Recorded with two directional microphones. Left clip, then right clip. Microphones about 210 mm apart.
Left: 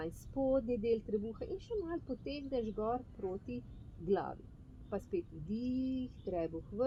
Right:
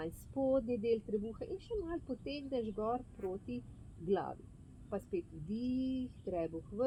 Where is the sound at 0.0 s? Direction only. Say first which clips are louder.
Even; 15° right (ahead or behind).